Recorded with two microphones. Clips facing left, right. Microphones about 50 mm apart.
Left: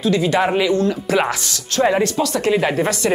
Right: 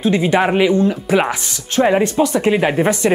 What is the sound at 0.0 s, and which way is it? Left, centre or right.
Speech, right.